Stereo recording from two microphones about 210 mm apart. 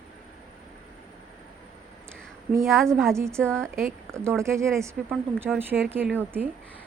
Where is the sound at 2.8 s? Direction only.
Centre (ahead or behind).